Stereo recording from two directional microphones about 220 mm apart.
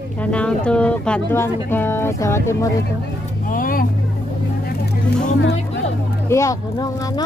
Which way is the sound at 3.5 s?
40° left (ahead or behind).